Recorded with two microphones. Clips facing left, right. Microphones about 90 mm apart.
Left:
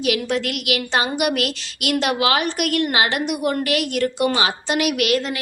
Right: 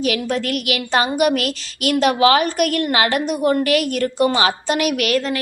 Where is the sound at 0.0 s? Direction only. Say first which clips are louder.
Right 1 dB; 40° right (ahead or behind).